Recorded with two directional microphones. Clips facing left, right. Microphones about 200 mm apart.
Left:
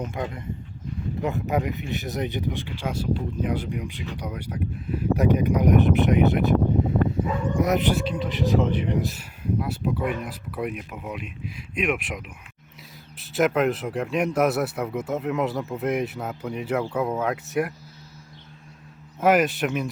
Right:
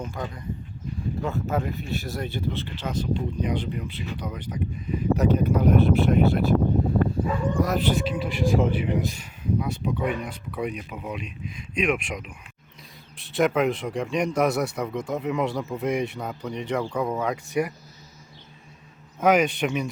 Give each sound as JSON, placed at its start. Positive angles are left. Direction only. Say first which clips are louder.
{"t": 0.0, "sound": "speech", "louder": "left 2 dB", "side_deg": 20}
{"t": 7.6, "sound": "speech", "louder": "left 3 dB", "side_deg": 20}
{"t": 7.9, "sound": "speech", "louder": "even", "side_deg": -5}
{"t": 19.2, "sound": "speech", "louder": "even", "side_deg": 0}